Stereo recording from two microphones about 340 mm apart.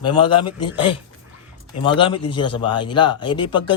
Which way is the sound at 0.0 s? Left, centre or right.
Centre.